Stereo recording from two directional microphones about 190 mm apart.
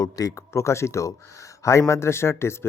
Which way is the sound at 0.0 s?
15° left (ahead or behind).